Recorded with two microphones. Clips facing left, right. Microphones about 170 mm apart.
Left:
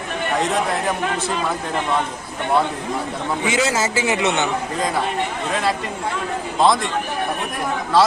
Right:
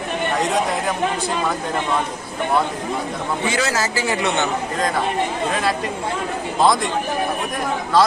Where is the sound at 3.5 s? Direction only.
20° left (ahead or behind).